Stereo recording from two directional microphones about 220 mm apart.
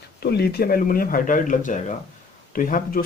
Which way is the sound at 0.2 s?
45° left (ahead or behind).